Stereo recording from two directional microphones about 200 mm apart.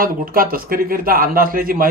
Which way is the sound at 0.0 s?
45° right (ahead or behind).